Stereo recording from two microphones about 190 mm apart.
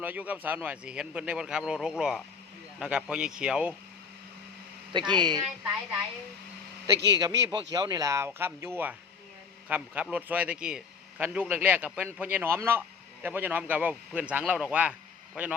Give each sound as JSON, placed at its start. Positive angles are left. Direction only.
{"t": 0.0, "sound": "speech", "side_deg": -10}
{"t": 4.9, "sound": "speech", "side_deg": -25}
{"t": 7.1, "sound": "a man's voice", "side_deg": -20}